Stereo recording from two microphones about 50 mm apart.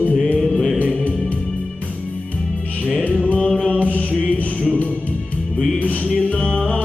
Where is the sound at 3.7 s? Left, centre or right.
Left.